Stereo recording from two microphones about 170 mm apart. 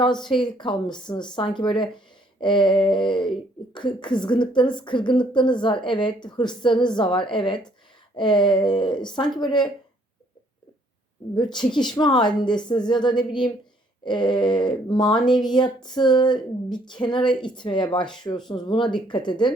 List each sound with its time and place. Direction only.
0.0 s speech: 25° left (ahead or behind)
11.3 s speech: 25° left (ahead or behind)